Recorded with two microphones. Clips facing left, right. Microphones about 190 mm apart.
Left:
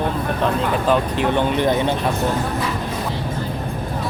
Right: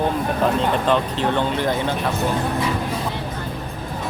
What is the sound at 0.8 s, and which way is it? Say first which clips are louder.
Speech: left 1 dB; 15° left (ahead or behind).